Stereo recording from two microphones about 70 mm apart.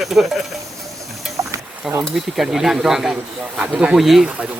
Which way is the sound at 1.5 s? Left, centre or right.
Right.